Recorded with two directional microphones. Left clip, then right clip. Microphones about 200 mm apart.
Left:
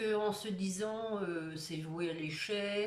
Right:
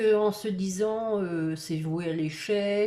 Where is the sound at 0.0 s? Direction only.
30° right (ahead or behind).